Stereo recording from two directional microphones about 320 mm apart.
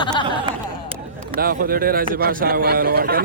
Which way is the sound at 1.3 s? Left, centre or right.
Right.